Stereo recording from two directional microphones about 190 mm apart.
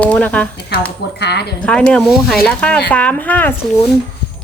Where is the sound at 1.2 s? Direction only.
60° left (ahead or behind).